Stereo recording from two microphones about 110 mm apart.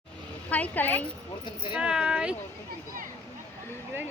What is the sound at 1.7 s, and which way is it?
Speech, 5° right (ahead or behind).